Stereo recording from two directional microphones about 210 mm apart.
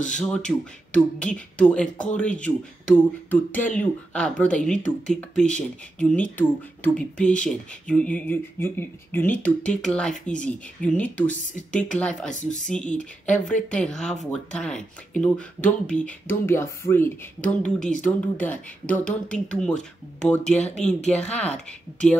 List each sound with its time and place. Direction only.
0.2 s speech: 5° left (ahead or behind)
12.4 s speech: 35° left (ahead or behind)
12.9 s speech: 5° left (ahead or behind)